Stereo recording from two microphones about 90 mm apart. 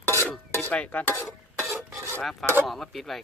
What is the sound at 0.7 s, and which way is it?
Speech, 15° left (ahead or behind).